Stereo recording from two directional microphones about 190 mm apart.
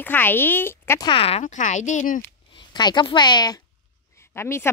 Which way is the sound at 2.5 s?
20° left (ahead or behind).